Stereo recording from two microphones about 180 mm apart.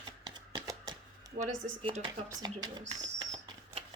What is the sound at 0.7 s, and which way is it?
Typewriter, 20° right (ahead or behind).